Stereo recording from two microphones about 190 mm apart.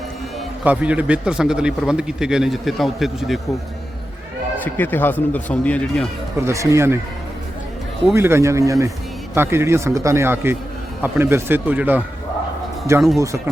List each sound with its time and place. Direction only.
0.6 s a man's voice: 10° right (ahead or behind)
4.6 s speech: 10° left (ahead or behind)
6.4 s a man's voice: 15° right (ahead or behind)
8.1 s a man's voice: 15° right (ahead or behind)
13.1 s a man's voice: 15° right (ahead or behind)